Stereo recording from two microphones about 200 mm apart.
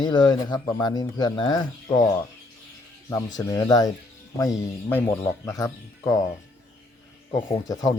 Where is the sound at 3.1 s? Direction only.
15° left (ahead or behind).